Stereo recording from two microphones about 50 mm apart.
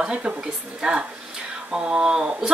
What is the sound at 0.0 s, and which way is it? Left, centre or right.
Speech, right.